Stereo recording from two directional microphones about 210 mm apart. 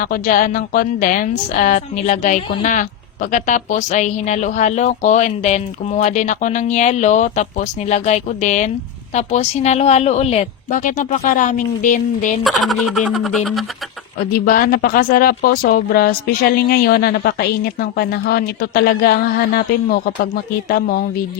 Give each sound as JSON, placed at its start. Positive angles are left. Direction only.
{"t": 0.0, "sound": "a woman's voice", "side_deg": 40}
{"t": 12.4, "sound": "speech", "side_deg": 0}
{"t": 14.3, "sound": "speech", "side_deg": 45}